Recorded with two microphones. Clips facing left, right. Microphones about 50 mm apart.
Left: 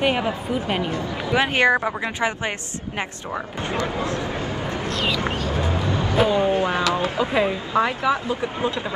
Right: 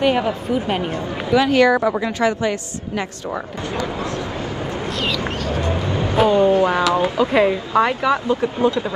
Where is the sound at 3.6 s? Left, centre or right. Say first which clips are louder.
Left 1 dB; left.